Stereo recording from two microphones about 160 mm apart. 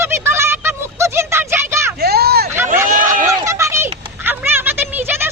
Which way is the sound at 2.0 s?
80° right.